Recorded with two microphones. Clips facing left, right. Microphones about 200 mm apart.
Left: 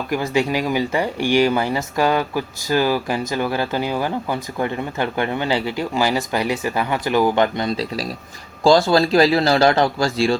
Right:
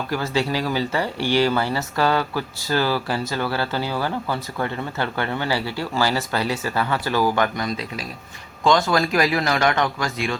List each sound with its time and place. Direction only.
0.1 s speech: 15° left (ahead or behind)